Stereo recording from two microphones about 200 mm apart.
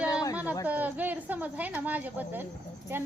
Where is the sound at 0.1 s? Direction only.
20° left (ahead or behind).